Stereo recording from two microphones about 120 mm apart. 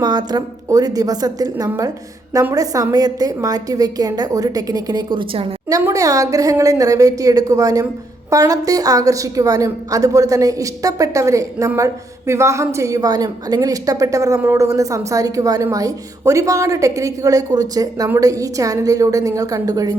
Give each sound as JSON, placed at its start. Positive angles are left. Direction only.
{"t": 0.0, "sound": "a woman's voice", "side_deg": -35}